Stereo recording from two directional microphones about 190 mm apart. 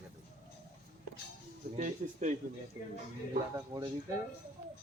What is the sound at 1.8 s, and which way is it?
Speech, 40° right (ahead or behind).